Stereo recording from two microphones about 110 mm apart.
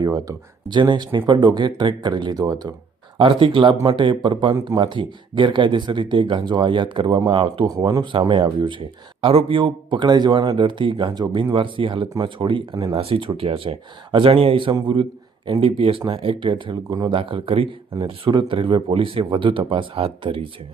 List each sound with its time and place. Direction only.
0.0 s speech: 35° right (ahead or behind)
3.2 s speech: 50° right (ahead or behind)
7.8 s speech: 30° right (ahead or behind)
8.3 s speech: 50° right (ahead or behind)
17.9 s speech: 40° right (ahead or behind)